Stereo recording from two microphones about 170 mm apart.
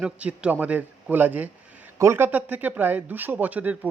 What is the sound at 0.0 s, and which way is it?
A man's voice, 5° right (ahead or behind).